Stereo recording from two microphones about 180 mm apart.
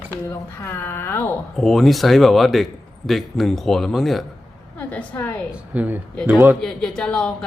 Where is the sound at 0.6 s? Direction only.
15° left (ahead or behind).